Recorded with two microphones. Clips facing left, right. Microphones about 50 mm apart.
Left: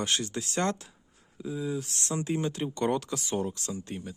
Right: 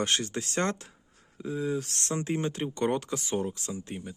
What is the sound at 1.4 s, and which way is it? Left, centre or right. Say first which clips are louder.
Speech: right 2 dB; right.